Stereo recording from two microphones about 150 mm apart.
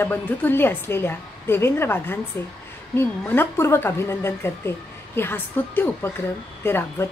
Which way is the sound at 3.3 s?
15° left (ahead or behind).